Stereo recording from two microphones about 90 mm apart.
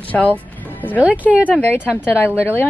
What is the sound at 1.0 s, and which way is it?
Speech, 15° right (ahead or behind).